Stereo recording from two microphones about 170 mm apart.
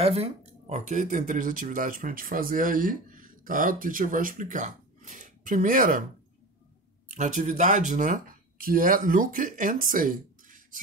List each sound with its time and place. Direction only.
0.0 s speech: 35° right (ahead or behind); by 6.0 s 55° right (ahead or behind)
7.1 s speech: 45° right (ahead or behind)